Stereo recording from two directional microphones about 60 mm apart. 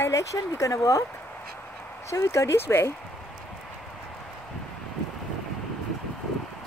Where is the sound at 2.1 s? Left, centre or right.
Left.